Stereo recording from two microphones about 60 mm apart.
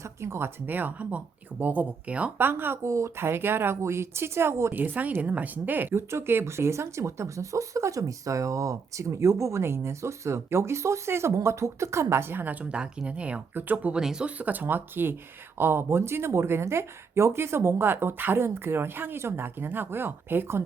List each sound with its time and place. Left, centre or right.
0.0 s speech: right
2.4 s speech: right
2.8 s speech: right
3.2 s speech: right
4.7 s speech: right
5.9 s speech: right; by 13.4 s centre
13.5 s speech: right
13.9 s speech: centre
14.3 s speech: right